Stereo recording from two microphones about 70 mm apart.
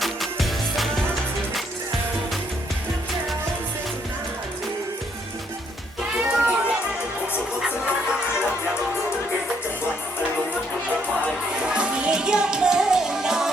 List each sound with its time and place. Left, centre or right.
0.0 s music: centre
6.1 s music: centre
11.6 s music: centre